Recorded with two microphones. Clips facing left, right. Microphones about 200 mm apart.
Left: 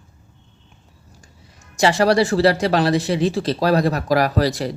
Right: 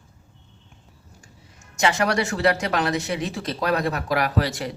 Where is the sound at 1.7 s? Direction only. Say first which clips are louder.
Left 6 dB; 35° left (ahead or behind).